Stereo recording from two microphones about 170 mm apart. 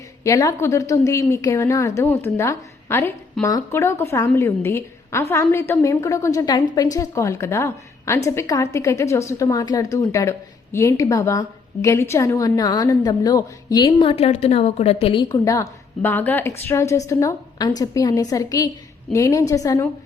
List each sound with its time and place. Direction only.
0.3 s a woman's voice: 20° left (ahead or behind)